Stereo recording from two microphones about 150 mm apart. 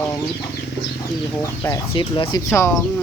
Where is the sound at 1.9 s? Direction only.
30° left (ahead or behind).